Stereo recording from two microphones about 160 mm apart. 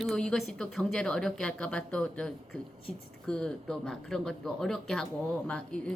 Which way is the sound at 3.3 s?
5° left (ahead or behind).